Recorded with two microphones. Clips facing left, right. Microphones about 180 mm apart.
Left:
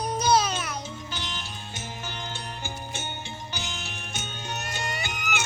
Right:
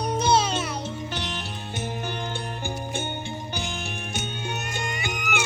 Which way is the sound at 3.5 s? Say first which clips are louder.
Right 4 dB; 55° right (ahead or behind).